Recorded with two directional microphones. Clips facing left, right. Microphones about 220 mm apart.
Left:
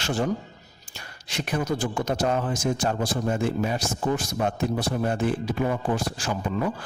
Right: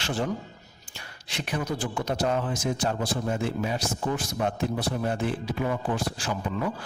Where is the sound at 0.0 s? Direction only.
45° left (ahead or behind).